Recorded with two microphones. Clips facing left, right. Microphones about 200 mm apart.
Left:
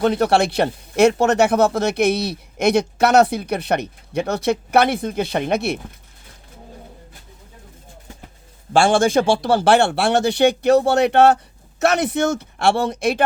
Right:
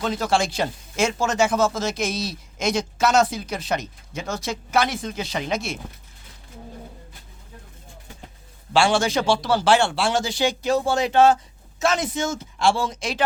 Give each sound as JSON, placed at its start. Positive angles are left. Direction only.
{"t": 0.0, "sound": "speech", "side_deg": 60}
{"t": 8.7, "sound": "speech", "side_deg": 50}